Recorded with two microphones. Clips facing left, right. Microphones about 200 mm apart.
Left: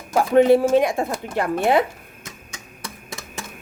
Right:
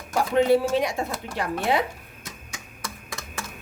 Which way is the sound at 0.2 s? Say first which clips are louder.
Left 5 dB; 55° left (ahead or behind).